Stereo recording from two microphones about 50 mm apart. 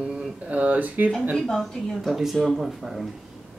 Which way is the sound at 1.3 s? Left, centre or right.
Centre.